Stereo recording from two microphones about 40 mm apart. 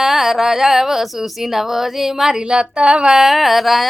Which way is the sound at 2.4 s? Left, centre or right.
Right.